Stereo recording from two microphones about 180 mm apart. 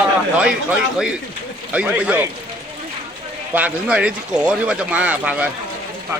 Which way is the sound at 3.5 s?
5° right (ahead or behind).